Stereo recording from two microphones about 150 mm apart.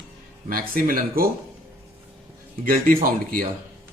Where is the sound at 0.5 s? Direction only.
70° right (ahead or behind).